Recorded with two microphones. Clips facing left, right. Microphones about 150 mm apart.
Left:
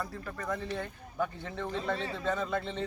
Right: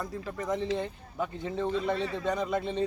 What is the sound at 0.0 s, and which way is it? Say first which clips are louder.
Speech: right 3 dB; 20° right (ahead or behind).